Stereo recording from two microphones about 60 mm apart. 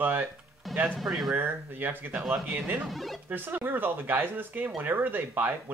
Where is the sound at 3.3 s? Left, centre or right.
Right.